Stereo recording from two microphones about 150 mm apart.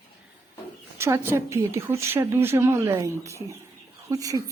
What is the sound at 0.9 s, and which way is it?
A woman's voice, 15° right (ahead or behind).